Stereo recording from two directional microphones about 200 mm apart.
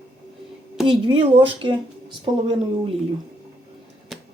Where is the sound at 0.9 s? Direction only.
25° right (ahead or behind).